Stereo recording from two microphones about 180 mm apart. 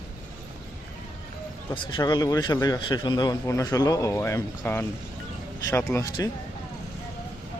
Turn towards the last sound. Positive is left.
turn(degrees=20)  # may be behind; listen again after turning